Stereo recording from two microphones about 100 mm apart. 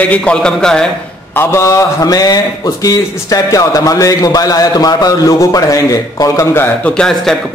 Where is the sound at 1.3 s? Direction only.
25° left (ahead or behind).